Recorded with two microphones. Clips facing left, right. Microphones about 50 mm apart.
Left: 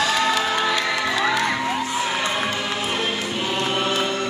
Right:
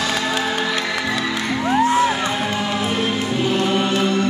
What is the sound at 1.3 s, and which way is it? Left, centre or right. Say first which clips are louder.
Music: right 2 dB; right.